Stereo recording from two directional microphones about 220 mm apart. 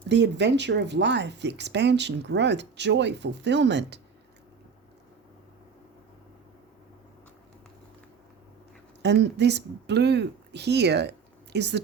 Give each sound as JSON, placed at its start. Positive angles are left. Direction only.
{"t": 0.1, "sound": "speech", "side_deg": -50}
{"t": 9.0, "sound": "speech", "side_deg": -50}